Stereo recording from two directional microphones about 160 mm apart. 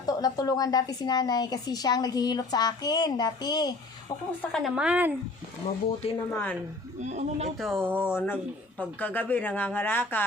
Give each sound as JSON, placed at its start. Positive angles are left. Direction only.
{"t": 0.0, "sound": "a woman's voice", "side_deg": 25}
{"t": 4.5, "sound": "a woman's voice", "side_deg": -5}
{"t": 6.1, "sound": "speech", "side_deg": 10}
{"t": 7.0, "sound": "speech", "side_deg": -45}
{"t": 7.8, "sound": "a woman's voice", "side_deg": -10}
{"t": 8.1, "sound": "speech", "side_deg": 10}